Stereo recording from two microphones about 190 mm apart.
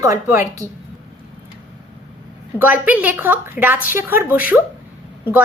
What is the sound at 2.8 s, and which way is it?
A woman's voice, 10° right (ahead or behind).